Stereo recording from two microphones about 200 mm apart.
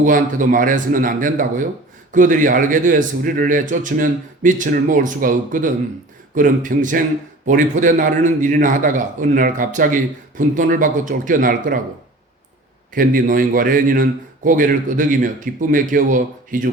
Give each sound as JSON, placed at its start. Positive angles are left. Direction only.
{"t": 0.0, "sound": "a man's voice", "side_deg": -40}
{"t": 12.9, "sound": "a man's voice", "side_deg": -45}